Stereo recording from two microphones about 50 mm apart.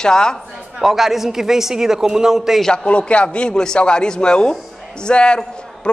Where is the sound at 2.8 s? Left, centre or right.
Left.